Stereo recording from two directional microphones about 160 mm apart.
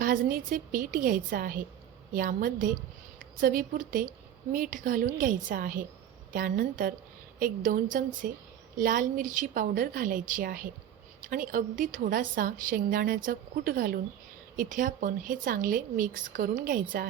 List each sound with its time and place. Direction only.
0.0 s a woman's voice: 60° right (ahead or behind)